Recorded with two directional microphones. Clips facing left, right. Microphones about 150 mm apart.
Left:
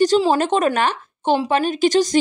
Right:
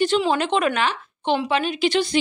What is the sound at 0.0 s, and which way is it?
A woman's voice, 40° left (ahead or behind).